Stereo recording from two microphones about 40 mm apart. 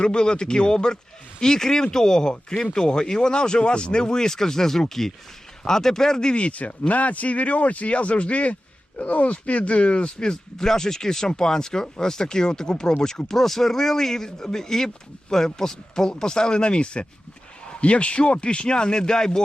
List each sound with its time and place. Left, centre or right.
0.0 s speech: left